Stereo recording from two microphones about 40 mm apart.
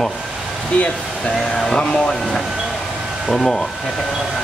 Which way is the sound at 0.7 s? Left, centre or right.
Left.